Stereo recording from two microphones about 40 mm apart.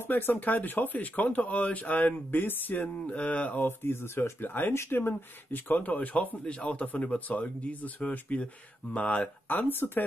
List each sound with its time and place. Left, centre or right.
0.0 s speech: left
3.1 s speech: left
3.5 s speech: left
5.8 s speech: left
9.5 s speech: left